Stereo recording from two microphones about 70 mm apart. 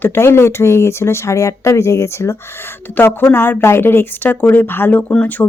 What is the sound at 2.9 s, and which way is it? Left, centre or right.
Speech, left.